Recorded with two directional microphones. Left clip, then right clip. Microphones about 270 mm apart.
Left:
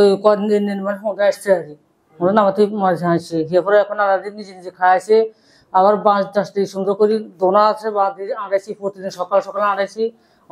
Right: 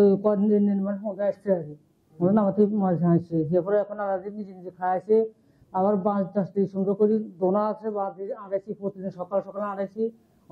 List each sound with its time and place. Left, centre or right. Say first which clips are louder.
0.0 s speech: left 8 dB; centre
6.8 s speech: left 8 dB; left
7.5 s speech: left 12 dB; centre